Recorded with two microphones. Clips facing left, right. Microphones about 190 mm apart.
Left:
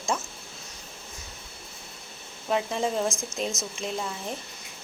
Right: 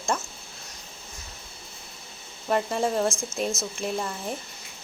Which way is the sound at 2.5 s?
Centre (ahead or behind).